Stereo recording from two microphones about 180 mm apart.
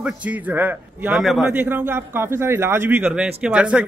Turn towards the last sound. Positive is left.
turn(degrees=-5)  # may be behind; listen again after turning